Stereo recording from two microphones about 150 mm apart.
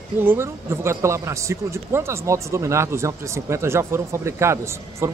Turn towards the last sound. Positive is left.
turn(degrees=-20)  # may be behind; listen again after turning